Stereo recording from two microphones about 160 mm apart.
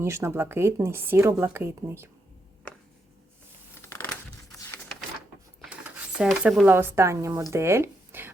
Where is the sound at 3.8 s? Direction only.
10° left (ahead or behind).